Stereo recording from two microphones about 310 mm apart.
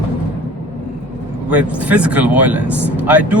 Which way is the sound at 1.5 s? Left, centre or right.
Centre.